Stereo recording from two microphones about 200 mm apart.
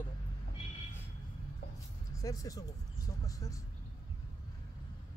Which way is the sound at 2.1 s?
15° left (ahead or behind).